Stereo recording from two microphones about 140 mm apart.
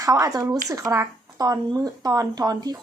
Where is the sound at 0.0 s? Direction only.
25° right (ahead or behind).